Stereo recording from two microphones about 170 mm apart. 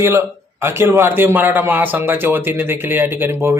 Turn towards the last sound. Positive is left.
turn(degrees=-15)  # may be behind; listen again after turning